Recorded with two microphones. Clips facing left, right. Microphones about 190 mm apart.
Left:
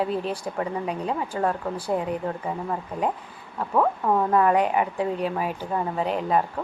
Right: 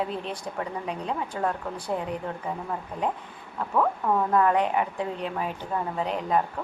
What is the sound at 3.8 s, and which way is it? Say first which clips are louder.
Speech: left 2 dB; 15° left (ahead or behind).